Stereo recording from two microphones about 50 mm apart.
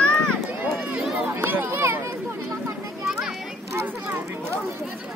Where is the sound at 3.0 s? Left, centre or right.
Centre.